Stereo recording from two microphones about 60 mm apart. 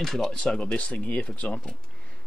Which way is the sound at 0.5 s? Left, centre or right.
Left.